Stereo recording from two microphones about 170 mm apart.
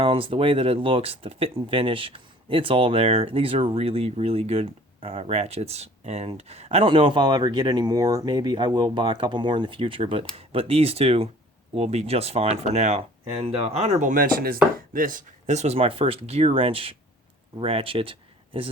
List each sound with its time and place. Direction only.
0.0 s speech: 30° right (ahead or behind)